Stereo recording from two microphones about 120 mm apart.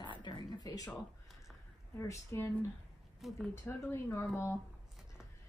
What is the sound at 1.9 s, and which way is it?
Speech, 25° left (ahead or behind).